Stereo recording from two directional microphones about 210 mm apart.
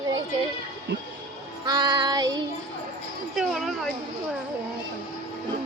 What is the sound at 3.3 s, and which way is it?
Speech, centre (ahead or behind).